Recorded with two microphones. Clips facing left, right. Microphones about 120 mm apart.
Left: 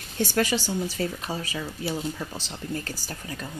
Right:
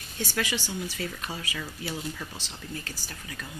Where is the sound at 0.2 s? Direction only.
45° left (ahead or behind).